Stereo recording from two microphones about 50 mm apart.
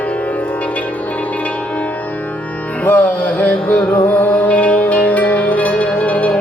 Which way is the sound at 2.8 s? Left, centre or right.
Left.